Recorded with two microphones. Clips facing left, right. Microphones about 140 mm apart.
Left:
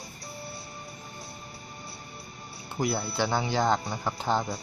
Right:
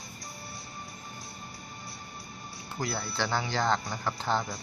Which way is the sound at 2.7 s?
15° left (ahead or behind).